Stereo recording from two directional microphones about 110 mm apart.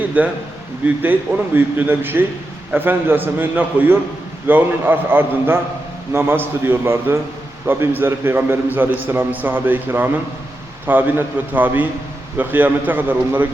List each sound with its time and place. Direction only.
0.2 s a man's voice: 15° right (ahead or behind)
1.5 s a man's voice: 20° right (ahead or behind)